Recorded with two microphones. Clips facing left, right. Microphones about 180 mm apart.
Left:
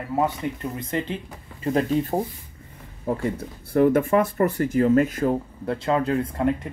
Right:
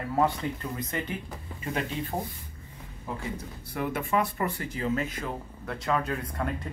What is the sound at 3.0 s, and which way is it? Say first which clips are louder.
Speech: left 10 dB; 55° left (ahead or behind).